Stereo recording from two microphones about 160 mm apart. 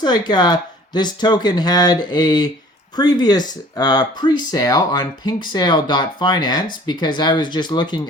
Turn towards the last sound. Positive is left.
turn(degrees=25)  # may be behind; listen again after turning